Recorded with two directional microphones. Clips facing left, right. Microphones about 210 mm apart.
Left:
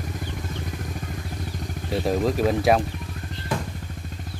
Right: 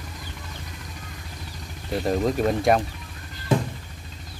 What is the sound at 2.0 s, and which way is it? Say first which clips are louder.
Speech: even; centre (ahead or behind).